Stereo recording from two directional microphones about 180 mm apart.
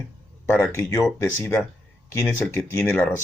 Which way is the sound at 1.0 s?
10° left (ahead or behind).